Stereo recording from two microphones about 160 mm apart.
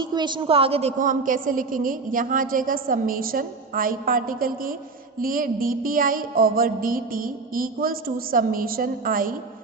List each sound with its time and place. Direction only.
0.0 s a woman's voice: 30° right (ahead or behind); by 9.3 s 60° right (ahead or behind)